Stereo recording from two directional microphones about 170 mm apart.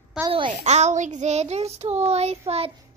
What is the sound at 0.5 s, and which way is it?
Child singing, 40° right (ahead or behind).